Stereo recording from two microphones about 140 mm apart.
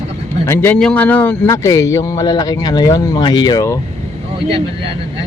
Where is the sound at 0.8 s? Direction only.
5° left (ahead or behind); by 3.8 s 25° left (ahead or behind).